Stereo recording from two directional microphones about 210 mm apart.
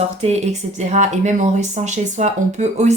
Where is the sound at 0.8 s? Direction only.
35° right (ahead or behind).